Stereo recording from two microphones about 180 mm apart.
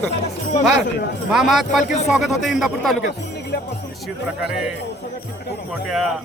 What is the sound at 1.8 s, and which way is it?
Speech, 40° left (ahead or behind).